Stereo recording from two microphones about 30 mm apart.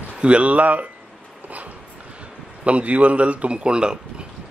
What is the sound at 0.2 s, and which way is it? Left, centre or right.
Speech, right.